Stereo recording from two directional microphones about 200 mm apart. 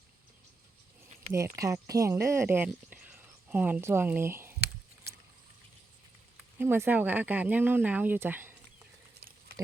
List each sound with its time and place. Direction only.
1.3 s speech: 15° right (ahead or behind)
6.3 s speech: 10° right (ahead or behind)
9.2 s patter: 50° right (ahead or behind)